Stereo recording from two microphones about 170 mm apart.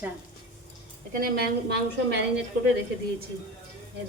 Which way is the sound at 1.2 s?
70° right (ahead or behind).